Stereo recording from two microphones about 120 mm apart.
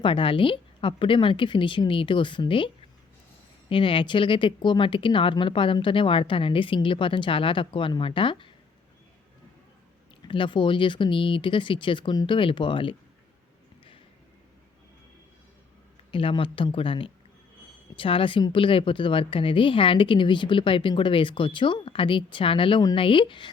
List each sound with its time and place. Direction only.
0.0 s a woman's voice: 45° left (ahead or behind)
10.2 s a woman's voice: 45° left (ahead or behind)
16.1 s a woman's voice: 45° left (ahead or behind)